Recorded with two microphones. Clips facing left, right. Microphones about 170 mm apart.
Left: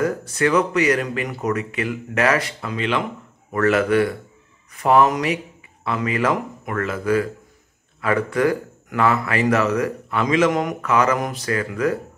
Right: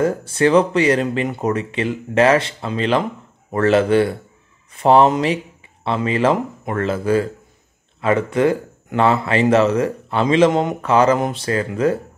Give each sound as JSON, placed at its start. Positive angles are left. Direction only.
{"t": 0.0, "sound": "speech", "side_deg": -30}